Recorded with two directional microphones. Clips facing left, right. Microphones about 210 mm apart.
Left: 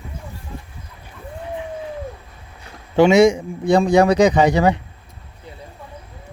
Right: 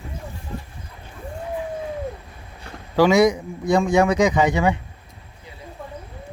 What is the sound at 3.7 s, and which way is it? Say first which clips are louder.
Speech: left 4 dB; 35° left (ahead or behind).